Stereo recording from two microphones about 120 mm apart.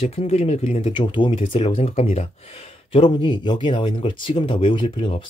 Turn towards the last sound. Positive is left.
turn(degrees=45)  # may be behind; listen again after turning